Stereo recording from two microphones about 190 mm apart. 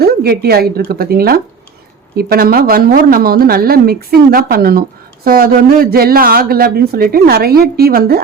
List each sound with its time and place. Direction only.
0.0 s a woman's voice: 55° right (ahead or behind)